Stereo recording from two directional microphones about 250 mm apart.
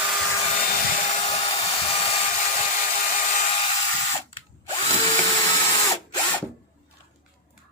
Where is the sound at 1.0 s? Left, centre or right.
Left.